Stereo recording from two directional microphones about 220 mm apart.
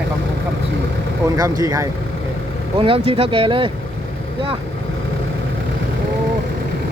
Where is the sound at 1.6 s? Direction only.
15° right (ahead or behind).